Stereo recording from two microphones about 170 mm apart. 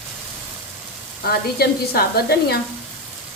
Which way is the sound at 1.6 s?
70° left (ahead or behind).